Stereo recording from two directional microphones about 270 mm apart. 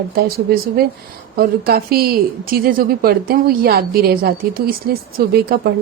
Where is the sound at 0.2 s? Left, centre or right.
Right.